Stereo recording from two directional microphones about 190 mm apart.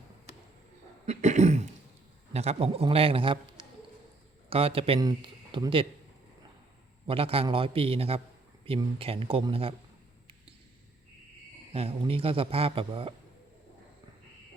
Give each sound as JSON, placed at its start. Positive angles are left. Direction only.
{"t": 1.0, "sound": "cough", "side_deg": -35}
{"t": 2.3, "sound": "a man's voice", "side_deg": -35}
{"t": 7.1, "sound": "a man's voice", "side_deg": -30}
{"t": 11.7, "sound": "a man's voice", "side_deg": -30}